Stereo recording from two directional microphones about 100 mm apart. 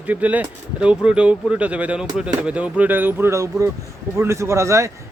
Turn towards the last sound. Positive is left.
turn(degrees=-30)  # may be behind; listen again after turning